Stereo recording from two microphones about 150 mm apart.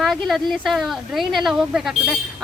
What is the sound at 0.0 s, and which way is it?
A woman's voice, centre (ahead or behind).